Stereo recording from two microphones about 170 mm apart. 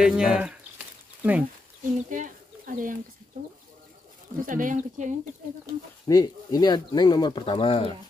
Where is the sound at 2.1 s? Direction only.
50° right (ahead or behind).